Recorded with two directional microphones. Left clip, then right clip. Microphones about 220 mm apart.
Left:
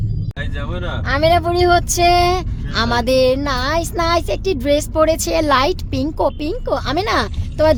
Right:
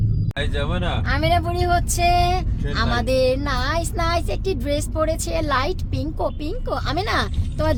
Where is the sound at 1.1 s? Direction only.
30° left (ahead or behind).